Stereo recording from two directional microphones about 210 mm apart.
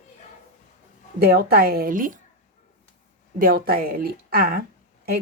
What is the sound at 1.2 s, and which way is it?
Speech, 45° right (ahead or behind).